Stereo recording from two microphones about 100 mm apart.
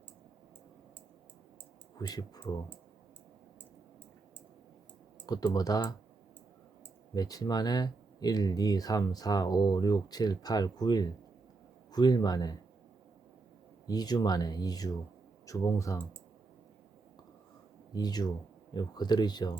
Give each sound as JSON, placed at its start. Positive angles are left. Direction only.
{"t": 2.0, "sound": "speech", "side_deg": 40}
{"t": 5.2, "sound": "speech", "side_deg": 40}
{"t": 7.1, "sound": "speech", "side_deg": 40}
{"t": 13.8, "sound": "speech", "side_deg": 40}
{"t": 17.9, "sound": "speech", "side_deg": 40}